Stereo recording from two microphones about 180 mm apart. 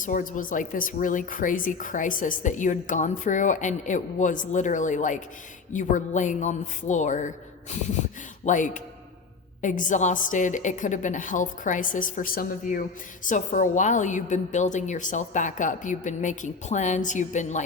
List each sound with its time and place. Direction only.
0.0 s a woman's voice: 45° left (ahead or behind)
8.4 s a woman's voice: 45° left (ahead or behind)